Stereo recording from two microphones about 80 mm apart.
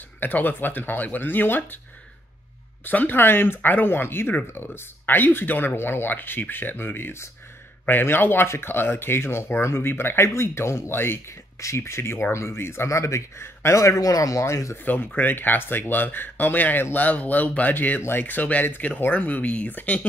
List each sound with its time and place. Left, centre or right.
0.2 s speech: left
2.8 s speech: left
14.9 s speech: left